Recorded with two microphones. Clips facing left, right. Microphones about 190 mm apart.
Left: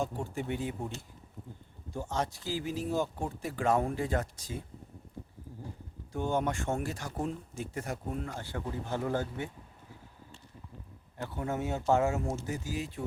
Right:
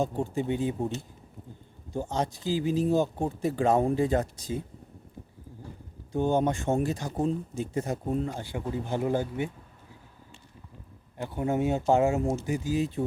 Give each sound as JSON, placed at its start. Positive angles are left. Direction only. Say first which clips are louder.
{"t": 0.3, "sound": "speech", "louder": "right 6 dB", "side_deg": -20}
{"t": 2.0, "sound": "speech", "louder": "right 4 dB", "side_deg": -20}
{"t": 6.1, "sound": "speech", "louder": "right 6 dB", "side_deg": -20}
{"t": 11.2, "sound": "speech", "louder": "right 7 dB", "side_deg": -15}